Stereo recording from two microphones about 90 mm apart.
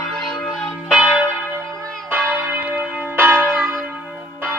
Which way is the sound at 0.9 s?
10° right (ahead or behind).